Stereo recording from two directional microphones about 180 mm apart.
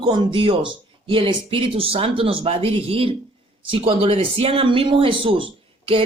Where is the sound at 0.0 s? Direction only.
25° right (ahead or behind).